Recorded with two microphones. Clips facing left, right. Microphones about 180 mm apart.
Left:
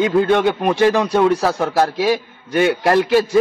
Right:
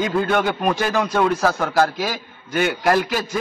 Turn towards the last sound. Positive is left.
turn(degrees=30)  # may be behind; listen again after turning